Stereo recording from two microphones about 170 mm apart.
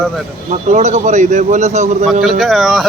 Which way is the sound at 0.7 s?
45° right (ahead or behind).